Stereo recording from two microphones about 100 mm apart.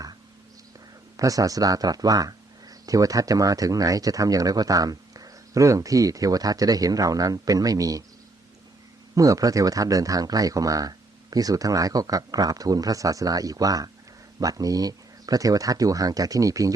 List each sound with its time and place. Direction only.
1.1 s speech: 35° right (ahead or behind)
9.1 s speech: 35° right (ahead or behind)